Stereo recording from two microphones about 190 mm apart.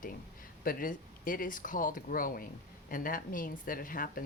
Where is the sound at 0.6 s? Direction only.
50° left (ahead or behind).